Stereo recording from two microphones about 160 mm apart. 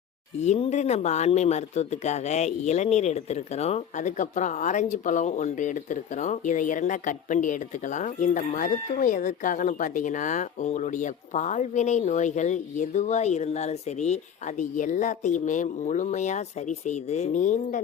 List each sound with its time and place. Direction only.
0.4 s speech: 45° left (ahead or behind)